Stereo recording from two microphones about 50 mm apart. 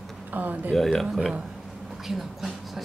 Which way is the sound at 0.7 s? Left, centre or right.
Centre.